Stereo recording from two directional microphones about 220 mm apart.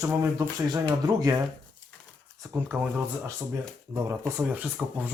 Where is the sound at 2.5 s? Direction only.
5° right (ahead or behind).